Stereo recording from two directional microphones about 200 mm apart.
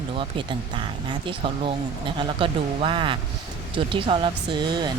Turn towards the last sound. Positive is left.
turn(degrees=-20)  # may be behind; listen again after turning